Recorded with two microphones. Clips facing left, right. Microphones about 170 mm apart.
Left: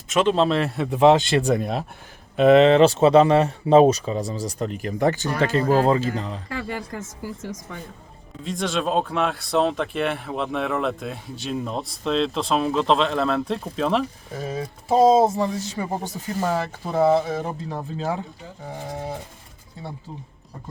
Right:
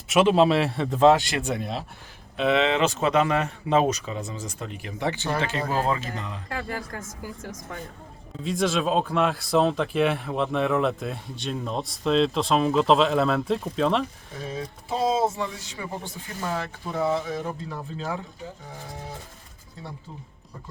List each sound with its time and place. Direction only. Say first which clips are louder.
0.1 s speech: right 1 dB; 5° right (ahead or behind)
0.9 s a man's voice: left 2 dB; 15° left (ahead or behind)
1.4 s speech: left 7 dB; 40° left (ahead or behind)
8.4 s speech: right 1 dB; centre (ahead or behind)
14.4 s speech: left 4 dB; 40° left (ahead or behind)